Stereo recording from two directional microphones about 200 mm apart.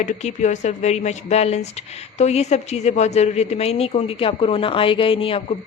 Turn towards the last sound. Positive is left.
turn(degrees=30)  # may be behind; listen again after turning